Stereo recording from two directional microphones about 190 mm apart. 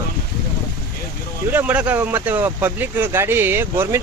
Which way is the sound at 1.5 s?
10° right (ahead or behind).